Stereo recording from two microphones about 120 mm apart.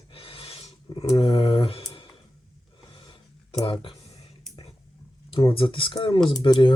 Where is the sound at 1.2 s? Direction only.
45° left (ahead or behind).